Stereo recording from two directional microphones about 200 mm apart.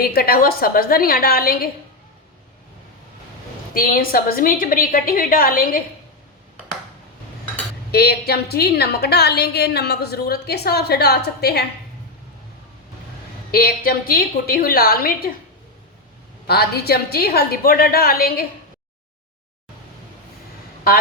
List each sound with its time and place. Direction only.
0.0 s a woman's voice: 50° left (ahead or behind)
3.8 s a woman's voice: 45° left (ahead or behind)
7.9 s a woman's voice: 50° left (ahead or behind)
13.5 s a woman's voice: 50° left (ahead or behind)
16.5 s a woman's voice: 50° left (ahead or behind)